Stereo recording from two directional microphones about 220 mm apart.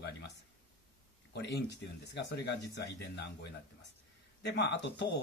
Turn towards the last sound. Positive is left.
turn(degrees=50)  # may be behind; listen again after turning